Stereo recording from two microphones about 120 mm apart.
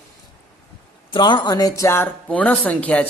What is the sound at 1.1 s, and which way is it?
A woman's voice, 40° left (ahead or behind).